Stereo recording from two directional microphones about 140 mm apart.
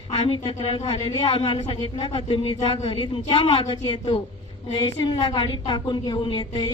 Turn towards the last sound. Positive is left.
turn(degrees=35)  # may be behind; listen again after turning